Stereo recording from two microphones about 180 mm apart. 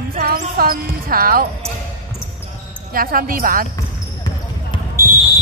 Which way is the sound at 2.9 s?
50° right (ahead or behind).